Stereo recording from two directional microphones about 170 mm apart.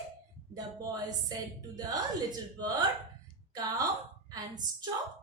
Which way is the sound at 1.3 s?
20° right (ahead or behind).